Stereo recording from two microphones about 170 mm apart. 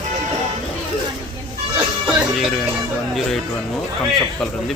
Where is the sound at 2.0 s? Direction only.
Centre (ahead or behind).